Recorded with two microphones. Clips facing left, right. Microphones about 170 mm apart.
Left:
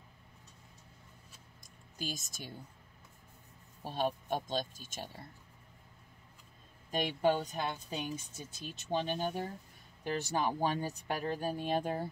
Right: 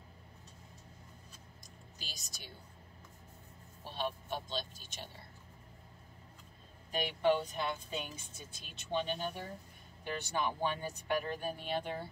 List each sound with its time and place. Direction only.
2.0 s speech: 45° left (ahead or behind)
3.8 s speech: 45° left (ahead or behind)
6.9 s speech: 40° left (ahead or behind)